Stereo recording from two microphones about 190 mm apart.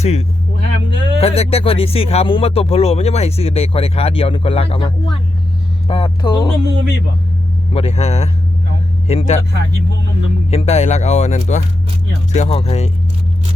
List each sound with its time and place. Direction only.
0.0 s speech: 35° left (ahead or behind)
0.6 s speech: 65° right (ahead or behind)
1.2 s speech: 30° left (ahead or behind)
5.9 s speech: 25° left (ahead or behind)
6.7 s speech: 75° right (ahead or behind)
7.7 s speech: 30° left (ahead or behind)
10.5 s speech: 30° left (ahead or behind)